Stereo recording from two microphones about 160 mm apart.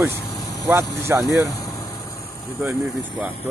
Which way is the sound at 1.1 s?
15° right (ahead or behind).